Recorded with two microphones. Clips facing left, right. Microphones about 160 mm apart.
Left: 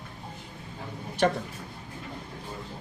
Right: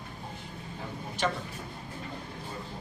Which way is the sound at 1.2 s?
55° left (ahead or behind).